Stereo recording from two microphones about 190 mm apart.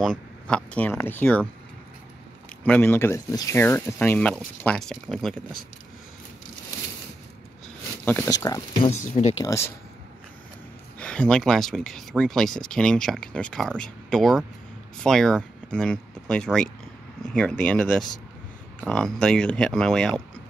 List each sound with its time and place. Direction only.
0.0 s speech: 5° left (ahead or behind)
2.6 s speech: 10° left (ahead or behind)
8.0 s speech: 10° left (ahead or behind)
8.8 s speech: 35° left (ahead or behind)
11.0 s speech: 5° left (ahead or behind)